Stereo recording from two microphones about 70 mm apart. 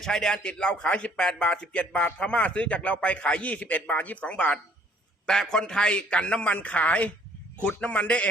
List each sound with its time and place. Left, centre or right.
0.0 s a man's voice: centre